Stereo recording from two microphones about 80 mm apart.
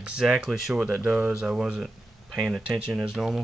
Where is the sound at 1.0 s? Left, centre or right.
Centre.